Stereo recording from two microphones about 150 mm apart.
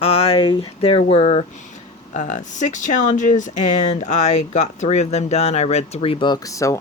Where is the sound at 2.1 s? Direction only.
55° left (ahead or behind); by 6.7 s 20° left (ahead or behind).